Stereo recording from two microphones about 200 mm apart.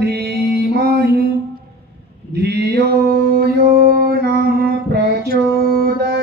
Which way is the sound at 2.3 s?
55° right (ahead or behind).